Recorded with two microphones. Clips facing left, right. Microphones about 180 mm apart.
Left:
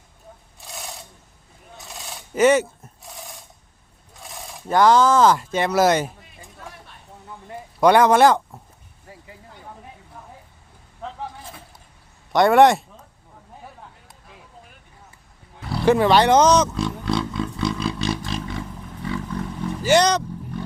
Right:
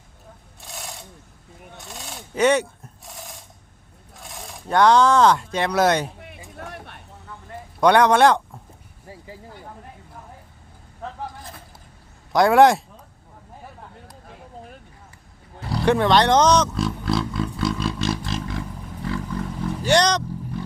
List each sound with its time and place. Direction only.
0.6 s sewing machine: centre (ahead or behind)
1.8 s coin: centre (ahead or behind)
4.1 s speech: centre (ahead or behind)
6.1 s a sound: 65° right (ahead or behind)
7.8 s speech: 5° left (ahead or behind)
9.0 s vehicle: 30° right (ahead or behind)
11.0 s vehicle: centre (ahead or behind)
12.3 s speech: centre (ahead or behind)
15.7 s speech: centre (ahead or behind)